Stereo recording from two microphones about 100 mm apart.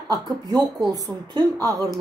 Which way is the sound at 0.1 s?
40° right (ahead or behind).